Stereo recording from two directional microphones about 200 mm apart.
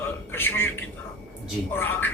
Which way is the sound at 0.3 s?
10° left (ahead or behind).